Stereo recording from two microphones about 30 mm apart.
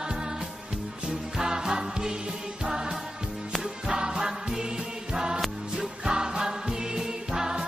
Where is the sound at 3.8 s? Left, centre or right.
Right.